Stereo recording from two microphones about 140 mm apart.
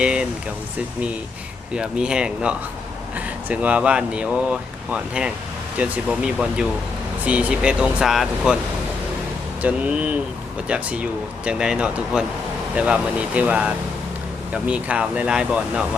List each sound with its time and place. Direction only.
0.0 s a sound: 5° right (ahead or behind)
1.7 s speech: 5° right (ahead or behind)
9.6 s speech: 10° right (ahead or behind)